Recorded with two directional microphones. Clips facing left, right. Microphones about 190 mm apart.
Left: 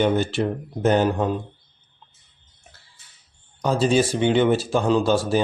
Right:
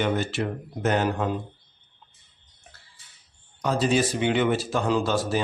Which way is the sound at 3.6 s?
30° left (ahead or behind).